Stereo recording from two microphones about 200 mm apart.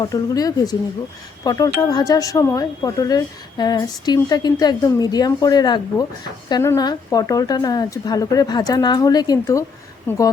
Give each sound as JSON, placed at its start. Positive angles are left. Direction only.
{"t": 0.0, "sound": "speech", "side_deg": 20}